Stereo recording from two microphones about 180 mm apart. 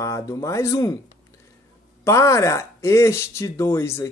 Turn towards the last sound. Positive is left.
turn(degrees=15)  # may be behind; listen again after turning